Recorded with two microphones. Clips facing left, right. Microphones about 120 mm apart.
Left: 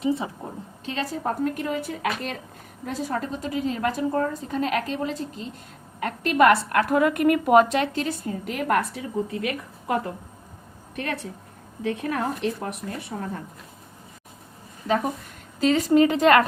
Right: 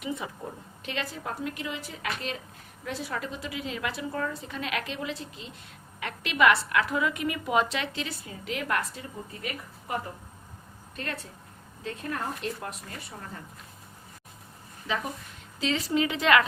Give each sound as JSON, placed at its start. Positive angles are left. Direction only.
{"t": 0.0, "sound": "a woman's voice", "side_deg": 30}
{"t": 10.9, "sound": "speech", "side_deg": 65}
{"t": 14.8, "sound": "a woman's voice", "side_deg": 45}